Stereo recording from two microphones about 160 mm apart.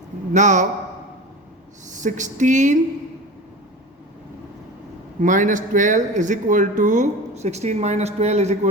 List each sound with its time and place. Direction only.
0.3 s speech: 50° right (ahead or behind)
1.9 s speech: 50° right (ahead or behind)
5.2 s speech: 55° right (ahead or behind)